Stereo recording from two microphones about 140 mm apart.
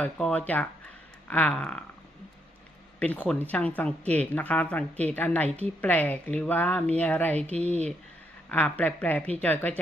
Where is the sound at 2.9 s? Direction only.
10° left (ahead or behind).